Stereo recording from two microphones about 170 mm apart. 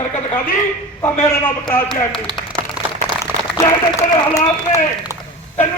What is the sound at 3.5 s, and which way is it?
Speech, 15° left (ahead or behind).